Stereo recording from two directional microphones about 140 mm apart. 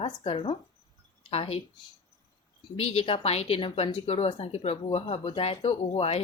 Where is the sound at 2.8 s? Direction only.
45° left (ahead or behind).